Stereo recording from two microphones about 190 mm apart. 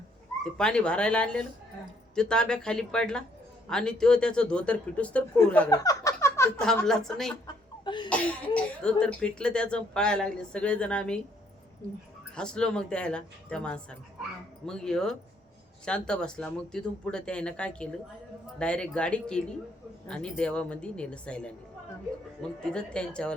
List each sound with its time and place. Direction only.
0.5 s speech: 5° left (ahead or behind)
5.7 s a sound: 20° left (ahead or behind)
6.6 s speech: 5° left (ahead or behind)
7.9 s a sound: 25° left (ahead or behind)
8.1 s speech: 5° left (ahead or behind)
12.4 s speech: 5° left (ahead or behind)